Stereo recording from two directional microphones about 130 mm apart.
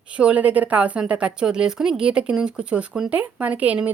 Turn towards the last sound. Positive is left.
turn(degrees=-10)  # may be behind; listen again after turning